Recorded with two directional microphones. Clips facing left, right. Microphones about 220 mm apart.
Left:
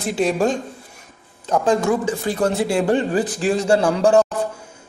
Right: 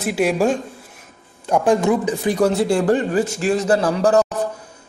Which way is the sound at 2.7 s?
25° left (ahead or behind).